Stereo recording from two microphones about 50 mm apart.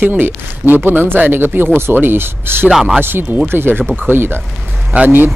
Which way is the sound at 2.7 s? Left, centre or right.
Centre.